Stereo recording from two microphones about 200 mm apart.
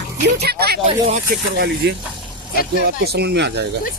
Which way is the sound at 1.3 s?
50° right (ahead or behind).